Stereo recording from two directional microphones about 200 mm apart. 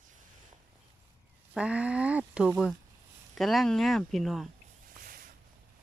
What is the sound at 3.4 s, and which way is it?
Speech, centre (ahead or behind).